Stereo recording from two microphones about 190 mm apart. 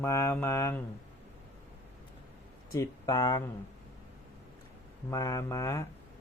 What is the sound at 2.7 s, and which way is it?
Speech, 15° left (ahead or behind).